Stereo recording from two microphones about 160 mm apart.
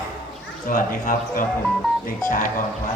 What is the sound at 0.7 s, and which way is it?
Speech, 55° left (ahead or behind).